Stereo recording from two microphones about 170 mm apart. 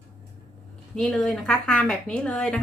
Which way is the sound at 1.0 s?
5° left (ahead or behind).